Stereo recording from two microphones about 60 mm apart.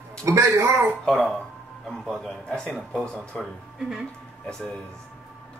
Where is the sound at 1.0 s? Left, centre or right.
Centre.